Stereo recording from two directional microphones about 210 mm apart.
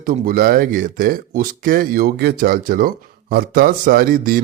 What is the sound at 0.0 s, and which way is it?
A man's voice, 45° right (ahead or behind).